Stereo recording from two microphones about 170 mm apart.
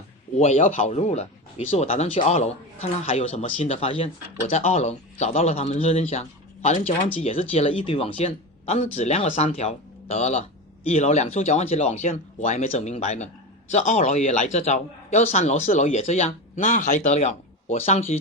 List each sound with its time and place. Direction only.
0.3 s a man's voice: 45° left (ahead or behind)